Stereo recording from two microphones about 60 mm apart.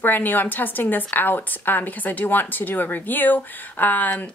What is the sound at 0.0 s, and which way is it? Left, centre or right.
A woman's voice, left.